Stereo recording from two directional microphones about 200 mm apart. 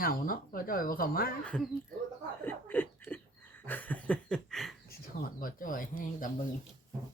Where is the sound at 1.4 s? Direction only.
5° left (ahead or behind).